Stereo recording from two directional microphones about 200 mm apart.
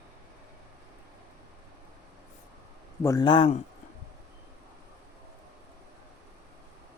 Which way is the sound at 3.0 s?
20° left (ahead or behind).